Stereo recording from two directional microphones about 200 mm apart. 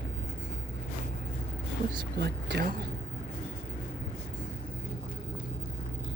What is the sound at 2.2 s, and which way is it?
Speech, 55° right (ahead or behind).